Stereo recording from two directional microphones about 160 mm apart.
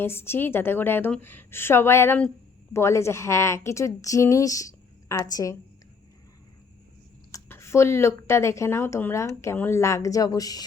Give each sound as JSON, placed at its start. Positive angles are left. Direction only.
{"t": 0.0, "sound": "speech", "side_deg": 15}
{"t": 7.3, "sound": "speech", "side_deg": 15}